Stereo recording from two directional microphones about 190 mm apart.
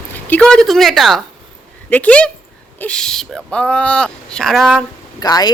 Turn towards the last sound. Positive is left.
turn(degrees=20)  # may be behind; listen again after turning